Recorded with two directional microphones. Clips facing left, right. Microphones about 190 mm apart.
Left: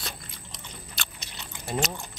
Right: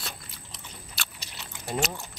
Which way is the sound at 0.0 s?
Centre (ahead or behind).